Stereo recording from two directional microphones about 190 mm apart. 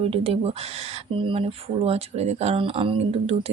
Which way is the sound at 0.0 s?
30° right (ahead or behind).